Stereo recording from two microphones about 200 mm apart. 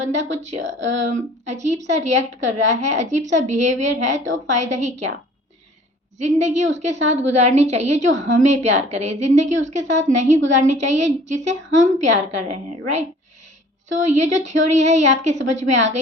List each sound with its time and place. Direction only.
0.0 s a woman's voice: 35° right (ahead or behind)
6.1 s a woman's voice: 35° right (ahead or behind)